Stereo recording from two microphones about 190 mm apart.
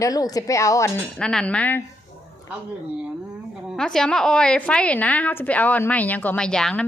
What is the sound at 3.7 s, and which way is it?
A woman's voice, 5° left (ahead or behind).